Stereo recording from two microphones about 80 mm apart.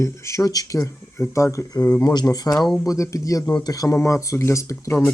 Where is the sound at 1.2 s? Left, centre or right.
Left.